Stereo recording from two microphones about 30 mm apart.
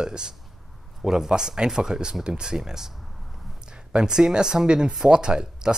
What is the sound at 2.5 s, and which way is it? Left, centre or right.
Speech, centre.